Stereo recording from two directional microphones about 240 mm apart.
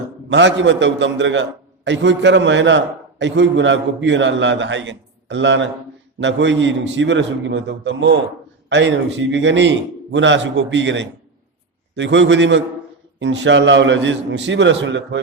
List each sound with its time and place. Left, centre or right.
0.3 s a man's voice: right